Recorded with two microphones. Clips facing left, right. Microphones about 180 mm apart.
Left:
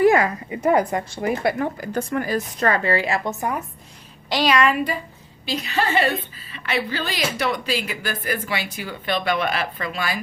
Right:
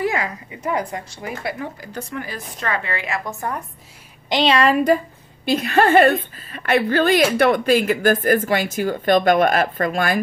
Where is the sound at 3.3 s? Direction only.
20° left (ahead or behind).